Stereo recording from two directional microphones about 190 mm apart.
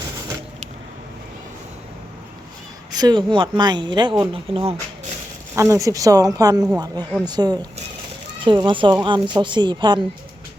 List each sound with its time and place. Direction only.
2.9 s speech: 20° right (ahead or behind)